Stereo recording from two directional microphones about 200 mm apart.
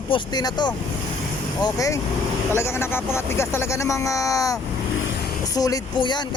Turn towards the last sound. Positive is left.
turn(degrees=20)  # may be behind; listen again after turning